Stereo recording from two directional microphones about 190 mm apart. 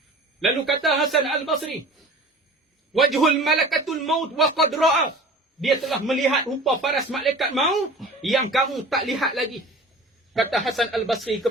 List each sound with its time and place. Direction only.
0.3 s speech: centre (ahead or behind)
2.9 s speech: centre (ahead or behind)